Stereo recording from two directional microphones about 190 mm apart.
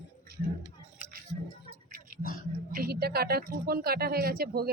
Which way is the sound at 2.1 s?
45° right (ahead or behind).